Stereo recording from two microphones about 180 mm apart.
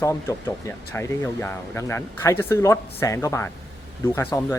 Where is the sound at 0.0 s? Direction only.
15° left (ahead or behind).